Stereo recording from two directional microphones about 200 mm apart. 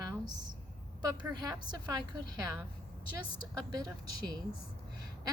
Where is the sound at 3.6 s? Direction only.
20° right (ahead or behind).